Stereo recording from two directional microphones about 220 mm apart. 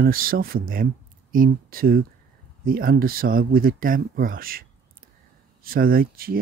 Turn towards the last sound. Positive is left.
turn(degrees=-40)  # may be behind; listen again after turning